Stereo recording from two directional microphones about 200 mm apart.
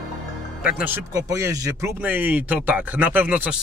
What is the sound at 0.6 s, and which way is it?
Speech, 5° right (ahead or behind).